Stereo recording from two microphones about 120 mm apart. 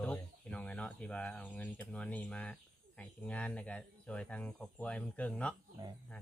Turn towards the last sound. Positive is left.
turn(degrees=-35)  # may be behind; listen again after turning